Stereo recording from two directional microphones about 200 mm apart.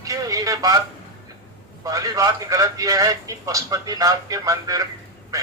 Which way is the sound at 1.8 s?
15° right (ahead or behind).